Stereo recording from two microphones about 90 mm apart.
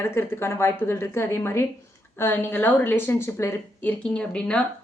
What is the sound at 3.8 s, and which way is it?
Speech, 15° left (ahead or behind).